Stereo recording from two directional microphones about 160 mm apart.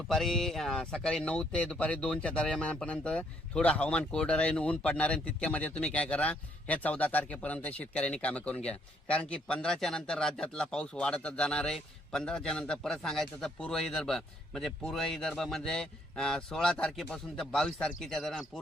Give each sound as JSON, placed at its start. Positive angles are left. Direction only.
{"t": 0.1, "sound": "speech", "side_deg": 0}